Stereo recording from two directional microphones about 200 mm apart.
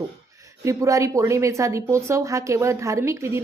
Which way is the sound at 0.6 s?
15° right (ahead or behind).